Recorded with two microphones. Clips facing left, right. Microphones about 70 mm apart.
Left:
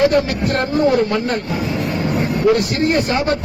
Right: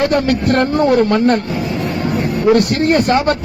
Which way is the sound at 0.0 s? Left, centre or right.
Right.